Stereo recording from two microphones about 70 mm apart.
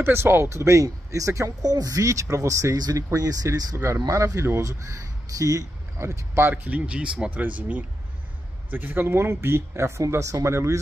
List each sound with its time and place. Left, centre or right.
0.0 s speech: right
1.7 s speech: right
3.7 s speech: right
6.5 s speech: right